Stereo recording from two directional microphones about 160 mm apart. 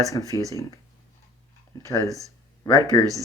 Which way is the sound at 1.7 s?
20° left (ahead or behind).